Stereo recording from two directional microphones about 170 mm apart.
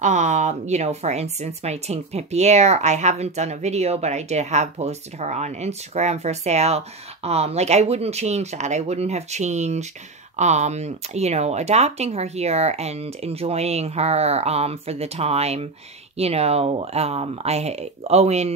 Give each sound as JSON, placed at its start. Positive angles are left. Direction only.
{"t": 0.0, "sound": "speech", "side_deg": -45}